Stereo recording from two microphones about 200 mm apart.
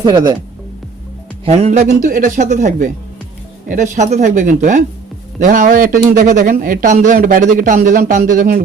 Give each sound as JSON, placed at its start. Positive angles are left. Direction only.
{"t": 0.0, "sound": "speech", "side_deg": -20}
{"t": 1.5, "sound": "a man's voice", "side_deg": -35}